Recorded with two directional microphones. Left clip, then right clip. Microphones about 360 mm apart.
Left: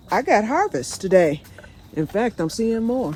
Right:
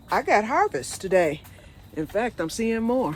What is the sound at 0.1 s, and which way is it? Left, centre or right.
Speech, centre.